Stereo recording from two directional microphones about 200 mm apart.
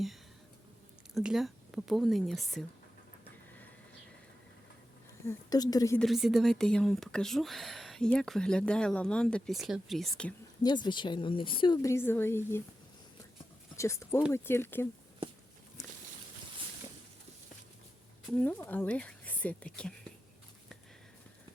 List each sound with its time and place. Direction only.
1.1 s speech: centre (ahead or behind)
5.2 s speech: 15° left (ahead or behind)
6.0 s speech: centre (ahead or behind)
10.6 s speech: 20° left (ahead or behind)
13.7 s speech: 15° left (ahead or behind)
18.3 s speech: 10° left (ahead or behind)